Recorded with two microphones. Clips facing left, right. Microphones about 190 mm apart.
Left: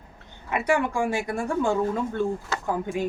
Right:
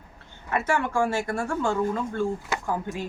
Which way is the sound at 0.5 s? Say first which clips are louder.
Left 1 dB; 15° left (ahead or behind).